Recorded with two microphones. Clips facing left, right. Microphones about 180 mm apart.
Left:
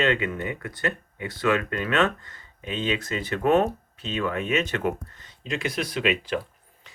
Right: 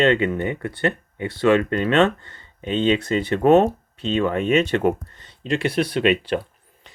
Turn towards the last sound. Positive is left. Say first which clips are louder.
# even
turn(degrees=-30)  # may be behind; listen again after turning